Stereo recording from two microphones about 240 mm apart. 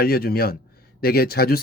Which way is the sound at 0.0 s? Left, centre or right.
Left.